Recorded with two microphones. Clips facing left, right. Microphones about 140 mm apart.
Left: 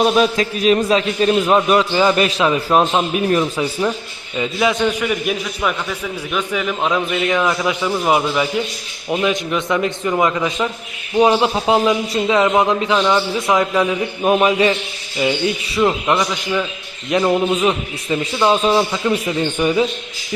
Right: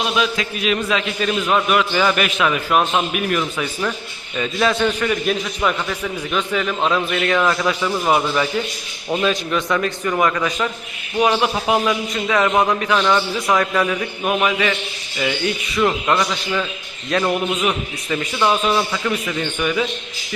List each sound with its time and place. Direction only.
0.0 s a man's voice: 40° left (ahead or behind)
4.4 s a man's voice: 15° left (ahead or behind)
14.3 s a man's voice: 30° left (ahead or behind)